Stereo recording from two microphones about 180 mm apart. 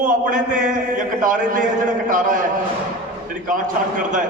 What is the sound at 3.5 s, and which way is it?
Speech, 45° right (ahead or behind).